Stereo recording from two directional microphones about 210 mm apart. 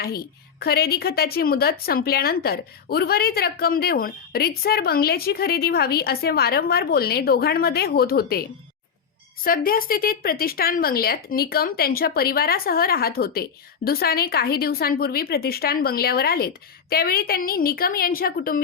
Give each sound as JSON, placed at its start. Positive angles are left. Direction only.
{"t": 0.0, "sound": "speech", "side_deg": 45}